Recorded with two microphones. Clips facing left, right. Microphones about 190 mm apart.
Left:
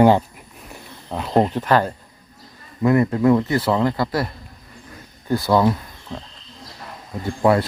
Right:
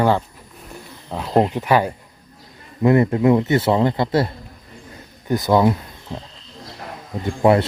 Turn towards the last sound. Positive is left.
turn(degrees=-25)  # may be behind; listen again after turning